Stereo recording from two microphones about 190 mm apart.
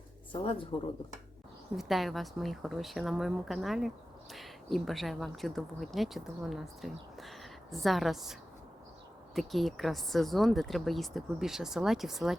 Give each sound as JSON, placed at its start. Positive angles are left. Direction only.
{"t": 0.3, "sound": "speech", "side_deg": 25}
{"t": 1.7, "sound": "a woman's voice", "side_deg": 0}